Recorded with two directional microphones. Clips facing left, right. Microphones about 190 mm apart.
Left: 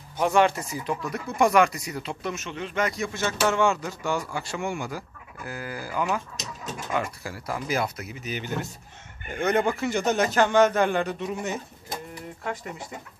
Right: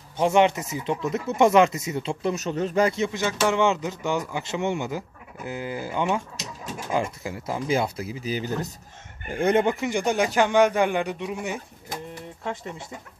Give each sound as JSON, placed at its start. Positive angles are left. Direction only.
{"t": 0.2, "sound": "a man's voice", "side_deg": -20}
{"t": 12.4, "sound": "speech", "side_deg": -25}